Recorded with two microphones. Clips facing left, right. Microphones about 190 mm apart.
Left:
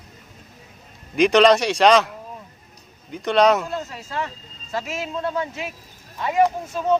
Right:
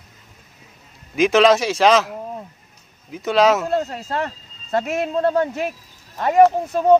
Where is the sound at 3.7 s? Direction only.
55° right (ahead or behind).